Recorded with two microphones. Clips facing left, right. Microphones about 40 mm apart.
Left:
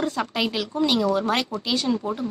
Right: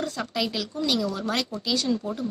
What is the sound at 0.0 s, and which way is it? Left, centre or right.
Speech, left.